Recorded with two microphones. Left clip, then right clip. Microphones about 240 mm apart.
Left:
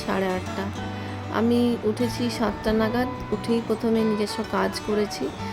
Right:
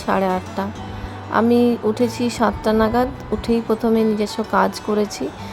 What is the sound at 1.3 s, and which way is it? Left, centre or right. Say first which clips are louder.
A woman's voice: right 7 dB; centre.